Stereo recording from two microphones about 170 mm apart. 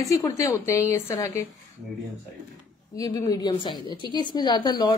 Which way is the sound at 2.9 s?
20° left (ahead or behind).